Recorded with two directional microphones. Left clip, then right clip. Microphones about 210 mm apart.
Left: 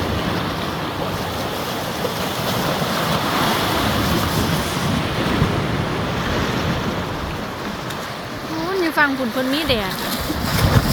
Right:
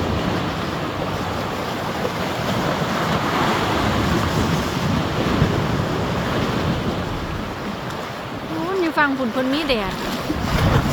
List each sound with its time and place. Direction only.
2.5 s waves: 50° left (ahead or behind)
9.0 s a sound: 10° left (ahead or behind)
9.5 s speech: 5° left (ahead or behind)